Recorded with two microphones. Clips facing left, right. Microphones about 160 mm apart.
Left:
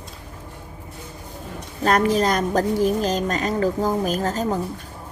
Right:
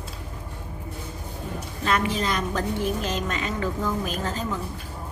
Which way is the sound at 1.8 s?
40° left (ahead or behind).